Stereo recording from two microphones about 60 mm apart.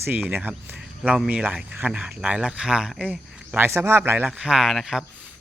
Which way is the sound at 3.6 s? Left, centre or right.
Right.